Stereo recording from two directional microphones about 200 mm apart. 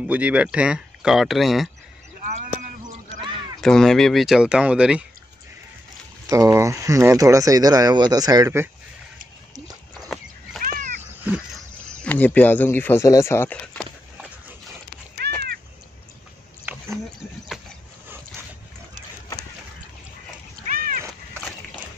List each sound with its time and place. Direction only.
0.0 s speech: 5° right (ahead or behind)
3.6 s speech: centre (ahead or behind)
6.2 s speech: 15° right (ahead or behind)
9.9 s a sound: centre (ahead or behind)
10.6 s cat: 40° right (ahead or behind)
11.0 s cat: 5° right (ahead or behind)
11.9 s speech: 5° left (ahead or behind)
15.2 s a sound: 55° right (ahead or behind)
16.7 s a sound: 10° right (ahead or behind)
20.6 s cat: 45° right (ahead or behind)